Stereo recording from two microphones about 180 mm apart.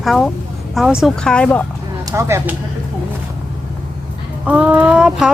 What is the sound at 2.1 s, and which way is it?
Speech, 15° right (ahead or behind).